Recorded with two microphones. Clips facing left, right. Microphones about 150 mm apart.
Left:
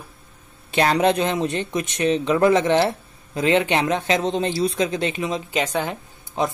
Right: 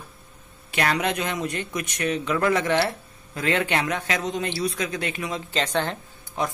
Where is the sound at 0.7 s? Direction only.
30° left (ahead or behind); by 5.9 s 10° left (ahead or behind).